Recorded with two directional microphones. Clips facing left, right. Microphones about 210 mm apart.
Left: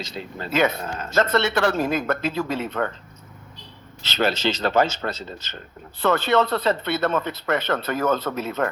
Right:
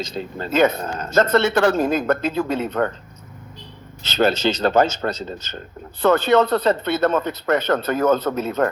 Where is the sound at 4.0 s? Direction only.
45° right (ahead or behind).